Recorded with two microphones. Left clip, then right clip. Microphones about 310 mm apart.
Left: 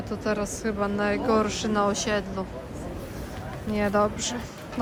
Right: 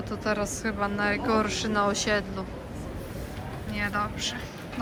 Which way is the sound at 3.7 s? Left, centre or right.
Centre.